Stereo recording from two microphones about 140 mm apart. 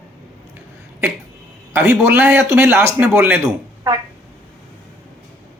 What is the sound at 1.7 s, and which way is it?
Speech, 20° right (ahead or behind).